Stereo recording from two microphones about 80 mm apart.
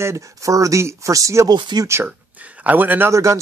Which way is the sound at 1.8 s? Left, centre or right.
Right.